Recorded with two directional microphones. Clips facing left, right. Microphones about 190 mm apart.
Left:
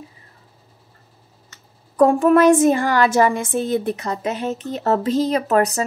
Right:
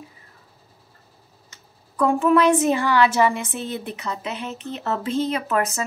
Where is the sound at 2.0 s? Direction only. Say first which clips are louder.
Left 4 dB; 45° left (ahead or behind).